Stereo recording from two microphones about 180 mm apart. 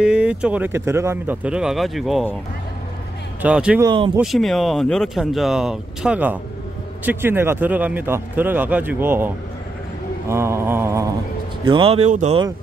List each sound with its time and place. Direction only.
0.0 s a man's voice: 5° right (ahead or behind)
3.4 s speech: 5° right (ahead or behind)
3.8 s speech: 25° right (ahead or behind)
4.2 s a man's voice: centre (ahead or behind)
11.6 s speech: 30° right (ahead or behind)
12.1 s speech: 40° right (ahead or behind)